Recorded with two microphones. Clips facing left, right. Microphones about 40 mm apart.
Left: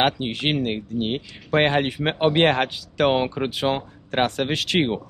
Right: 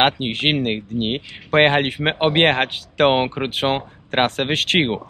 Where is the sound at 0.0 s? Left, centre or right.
Right.